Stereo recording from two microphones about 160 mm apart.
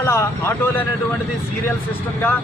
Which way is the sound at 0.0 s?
15° left (ahead or behind).